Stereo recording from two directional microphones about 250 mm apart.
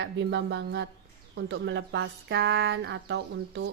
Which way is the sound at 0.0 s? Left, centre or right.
Right.